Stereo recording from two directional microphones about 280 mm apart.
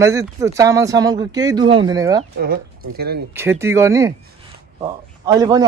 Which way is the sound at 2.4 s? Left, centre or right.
Right.